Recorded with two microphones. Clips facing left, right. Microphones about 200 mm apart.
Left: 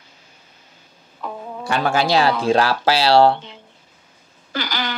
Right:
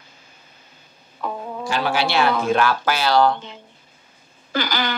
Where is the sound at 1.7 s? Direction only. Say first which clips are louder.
Left 3 dB; 45° left (ahead or behind).